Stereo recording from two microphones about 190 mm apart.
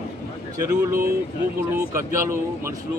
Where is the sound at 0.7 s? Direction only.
15° right (ahead or behind).